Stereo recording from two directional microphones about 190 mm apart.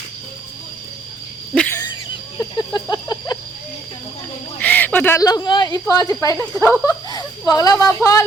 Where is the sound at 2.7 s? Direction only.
20° left (ahead or behind).